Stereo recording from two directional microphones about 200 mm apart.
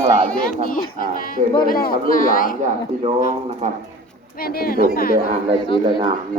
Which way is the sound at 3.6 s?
35° right (ahead or behind).